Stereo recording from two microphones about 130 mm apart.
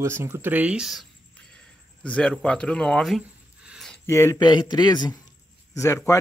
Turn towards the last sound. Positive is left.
turn(degrees=25)  # may be behind; listen again after turning